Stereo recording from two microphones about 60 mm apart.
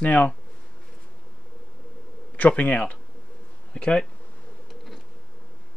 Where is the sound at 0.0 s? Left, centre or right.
Left.